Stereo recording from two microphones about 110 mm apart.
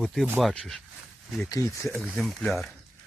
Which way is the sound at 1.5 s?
25° left (ahead or behind).